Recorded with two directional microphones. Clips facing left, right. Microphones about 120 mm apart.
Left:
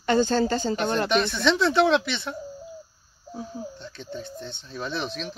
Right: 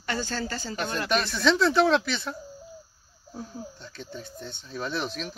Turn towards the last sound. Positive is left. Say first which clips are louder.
# left 1 dB
turn(degrees=-5)  # may be behind; listen again after turning